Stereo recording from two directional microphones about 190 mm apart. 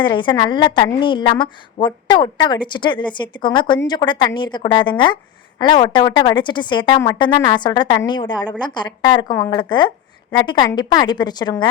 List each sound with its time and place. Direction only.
0.0 s a woman's voice: 25° left (ahead or behind)